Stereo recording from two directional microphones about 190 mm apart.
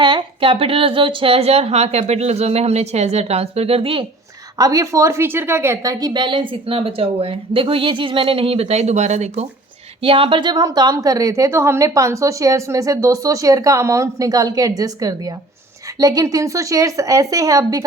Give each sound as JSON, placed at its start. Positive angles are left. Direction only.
{"t": 0.0, "sound": "speech", "side_deg": -25}
{"t": 4.5, "sound": "a woman's voice", "side_deg": -20}